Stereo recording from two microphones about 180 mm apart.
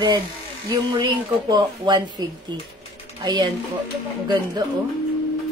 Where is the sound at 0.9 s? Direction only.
25° right (ahead or behind).